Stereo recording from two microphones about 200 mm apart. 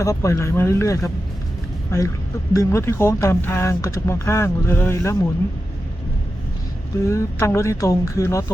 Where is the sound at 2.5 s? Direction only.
15° left (ahead or behind).